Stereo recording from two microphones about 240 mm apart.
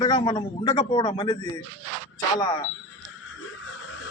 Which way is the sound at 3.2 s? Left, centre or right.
Left.